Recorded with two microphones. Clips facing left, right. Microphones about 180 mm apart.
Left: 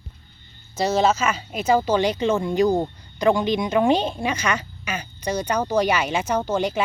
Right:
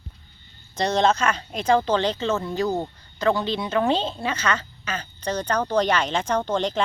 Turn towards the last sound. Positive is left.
turn(degrees=10)  # may be behind; listen again after turning